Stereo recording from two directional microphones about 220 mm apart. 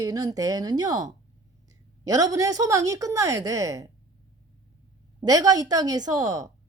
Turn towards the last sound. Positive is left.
turn(degrees=-15)  # may be behind; listen again after turning